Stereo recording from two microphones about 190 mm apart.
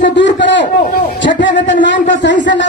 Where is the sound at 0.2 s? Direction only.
70° left (ahead or behind).